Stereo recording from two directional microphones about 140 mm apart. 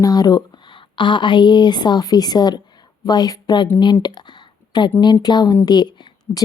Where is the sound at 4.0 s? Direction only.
30° left (ahead or behind).